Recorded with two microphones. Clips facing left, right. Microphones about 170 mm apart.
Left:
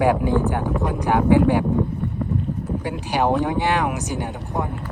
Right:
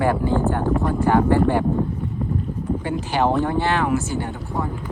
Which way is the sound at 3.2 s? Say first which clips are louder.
Even; 15° left (ahead or behind).